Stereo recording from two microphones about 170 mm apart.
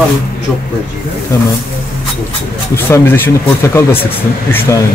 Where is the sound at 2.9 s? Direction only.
10° left (ahead or behind).